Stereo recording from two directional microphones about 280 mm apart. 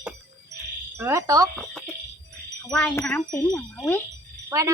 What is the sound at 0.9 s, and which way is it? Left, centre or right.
Speech, centre.